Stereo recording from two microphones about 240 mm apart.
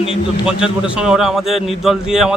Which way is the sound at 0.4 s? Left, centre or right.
Centre.